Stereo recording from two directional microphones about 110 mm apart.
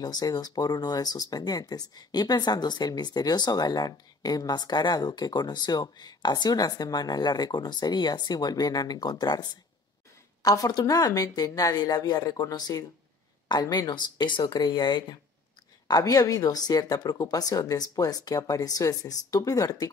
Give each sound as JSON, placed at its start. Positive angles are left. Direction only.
{"t": 0.0, "sound": "speech", "side_deg": 35}